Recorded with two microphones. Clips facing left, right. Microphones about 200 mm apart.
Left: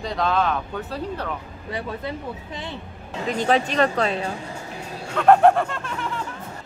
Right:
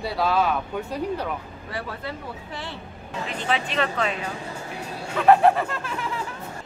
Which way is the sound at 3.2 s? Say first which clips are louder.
Left 7 dB; 40° left (ahead or behind).